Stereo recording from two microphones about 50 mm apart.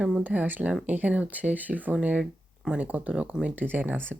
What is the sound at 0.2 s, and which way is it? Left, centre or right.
Speech, right.